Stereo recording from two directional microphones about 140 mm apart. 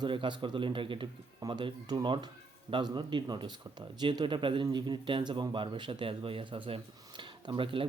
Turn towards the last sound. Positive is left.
turn(degrees=-40)  # may be behind; listen again after turning